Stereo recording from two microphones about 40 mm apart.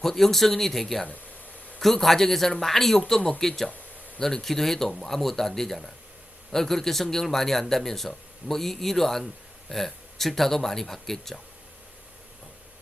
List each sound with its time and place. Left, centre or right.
0.0 s a man's voice: centre
3.2 s speech: centre
3.4 s a man's voice: centre